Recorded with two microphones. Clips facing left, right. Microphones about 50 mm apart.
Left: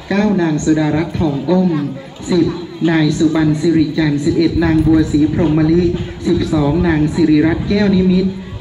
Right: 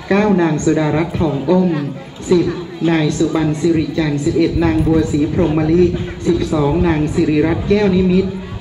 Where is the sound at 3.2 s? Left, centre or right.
Centre.